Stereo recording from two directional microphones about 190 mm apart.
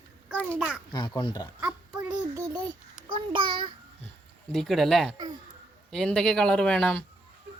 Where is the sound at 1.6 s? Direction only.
10° right (ahead or behind).